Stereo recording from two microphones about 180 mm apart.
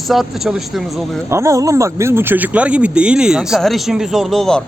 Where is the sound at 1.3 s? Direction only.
15° right (ahead or behind); by 4.6 s centre (ahead or behind).